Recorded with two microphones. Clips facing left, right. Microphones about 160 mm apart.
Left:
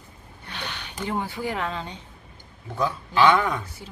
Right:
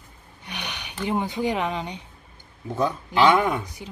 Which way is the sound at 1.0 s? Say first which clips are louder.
Right 4 dB; 15° right (ahead or behind).